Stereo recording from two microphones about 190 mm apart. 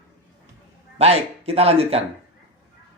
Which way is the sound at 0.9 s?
35° right (ahead or behind).